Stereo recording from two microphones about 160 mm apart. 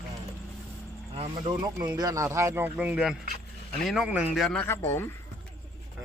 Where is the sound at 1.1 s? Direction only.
35° right (ahead or behind).